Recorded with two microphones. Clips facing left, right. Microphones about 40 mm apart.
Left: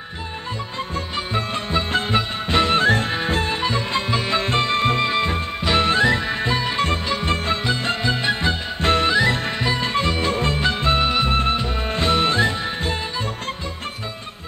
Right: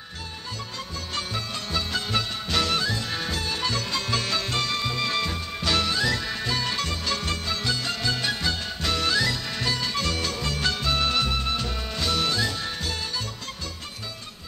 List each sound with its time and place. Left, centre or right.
1.3 s music: left
2.9 s music: left